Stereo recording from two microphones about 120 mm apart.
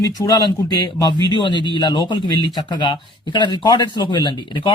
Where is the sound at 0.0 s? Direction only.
30° left (ahead or behind).